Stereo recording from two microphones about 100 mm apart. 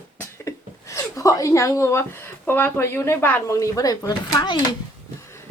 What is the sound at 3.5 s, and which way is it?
Speech, 35° left (ahead or behind).